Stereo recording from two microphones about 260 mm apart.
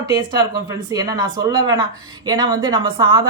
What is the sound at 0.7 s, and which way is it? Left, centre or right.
Speech, centre.